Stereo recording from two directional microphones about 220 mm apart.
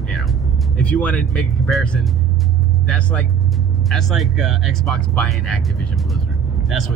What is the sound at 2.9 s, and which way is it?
Speech, 5° left (ahead or behind).